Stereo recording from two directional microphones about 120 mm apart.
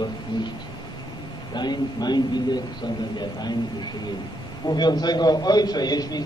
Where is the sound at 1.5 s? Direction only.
35° left (ahead or behind).